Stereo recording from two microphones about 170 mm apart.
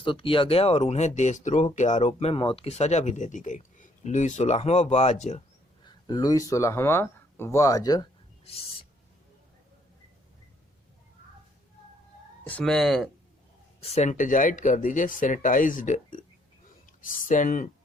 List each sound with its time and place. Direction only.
0.0 s speech: 30° left (ahead or behind)
5.8 s speech: 25° left (ahead or behind)
12.5 s speech: 5° left (ahead or behind)
13.8 s speech: 40° left (ahead or behind)